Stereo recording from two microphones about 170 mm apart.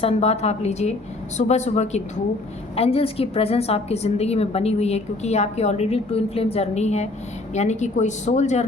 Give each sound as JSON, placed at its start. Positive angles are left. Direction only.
{"t": 0.0, "sound": "a woman's voice", "side_deg": 40}